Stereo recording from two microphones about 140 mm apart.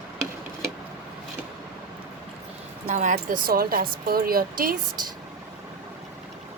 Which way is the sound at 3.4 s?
90° right.